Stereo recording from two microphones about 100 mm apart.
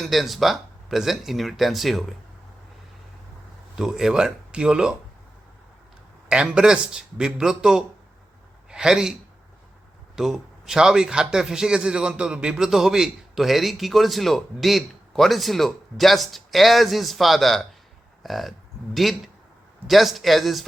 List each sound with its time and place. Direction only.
0.0 s a man's voice: centre (ahead or behind)
3.8 s a man's voice: 5° right (ahead or behind)
6.2 s a man's voice: 10° right (ahead or behind)
10.2 s a man's voice: centre (ahead or behind)